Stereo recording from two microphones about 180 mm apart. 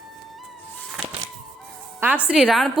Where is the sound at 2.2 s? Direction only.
5° right (ahead or behind).